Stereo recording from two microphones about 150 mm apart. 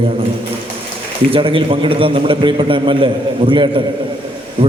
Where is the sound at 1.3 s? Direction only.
35° right (ahead or behind).